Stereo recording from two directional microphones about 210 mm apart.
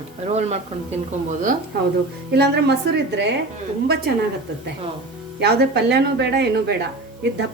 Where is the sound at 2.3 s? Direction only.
55° right (ahead or behind).